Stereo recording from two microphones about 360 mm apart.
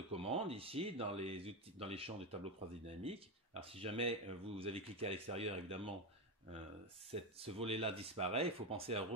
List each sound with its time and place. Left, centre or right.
0.1 s speech: centre
7.1 s speech: centre